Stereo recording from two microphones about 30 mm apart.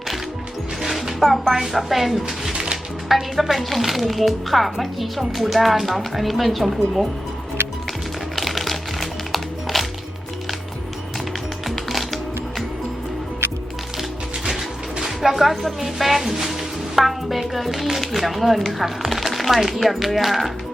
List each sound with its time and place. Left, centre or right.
0.8 s music: centre
1.5 s speech: centre
2.2 s a sound: right
3.1 s speech: centre
8.4 s music: centre
11.7 s music: centre
15.0 s music: centre
15.8 s speech: centre